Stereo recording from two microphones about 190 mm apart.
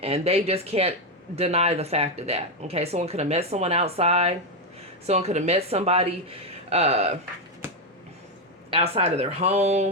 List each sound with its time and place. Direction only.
0.0 s speech: 30° right (ahead or behind)
8.7 s speech: 35° right (ahead or behind)